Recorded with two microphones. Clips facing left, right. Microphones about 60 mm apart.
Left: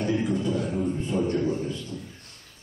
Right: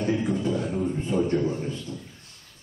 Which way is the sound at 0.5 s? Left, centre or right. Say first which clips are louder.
Even; centre.